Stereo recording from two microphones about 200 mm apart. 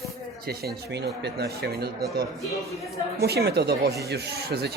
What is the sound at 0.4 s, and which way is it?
Speech, 50° right (ahead or behind).